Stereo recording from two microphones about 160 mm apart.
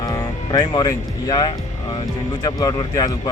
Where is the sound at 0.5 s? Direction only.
25° left (ahead or behind).